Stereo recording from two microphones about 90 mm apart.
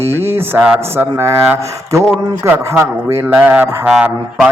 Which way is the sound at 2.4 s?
30° right (ahead or behind).